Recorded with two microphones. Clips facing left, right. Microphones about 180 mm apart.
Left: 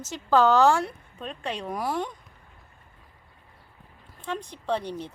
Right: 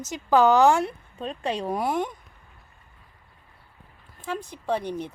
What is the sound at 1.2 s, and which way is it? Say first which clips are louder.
Speech: right 5 dB; 35° right (ahead or behind).